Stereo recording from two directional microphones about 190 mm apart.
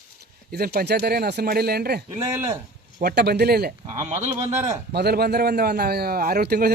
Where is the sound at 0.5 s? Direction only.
55° right (ahead or behind).